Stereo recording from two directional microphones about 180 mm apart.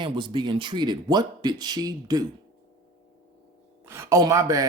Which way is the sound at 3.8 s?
15° right (ahead or behind).